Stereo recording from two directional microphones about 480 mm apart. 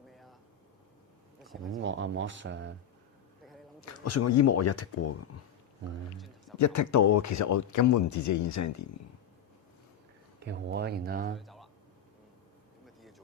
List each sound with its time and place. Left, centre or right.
0.1 s a sound: centre
1.4 s speech: centre
1.8 s speech: right
4.0 s speech: left
6.1 s a sound: centre
6.6 s speech: left
10.4 s speech: right
11.3 s a sound: centre
13.0 s vehicle: centre